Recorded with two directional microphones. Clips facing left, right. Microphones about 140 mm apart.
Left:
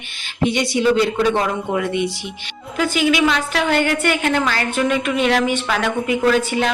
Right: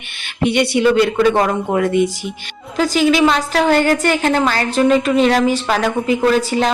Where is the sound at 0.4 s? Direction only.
60° right (ahead or behind).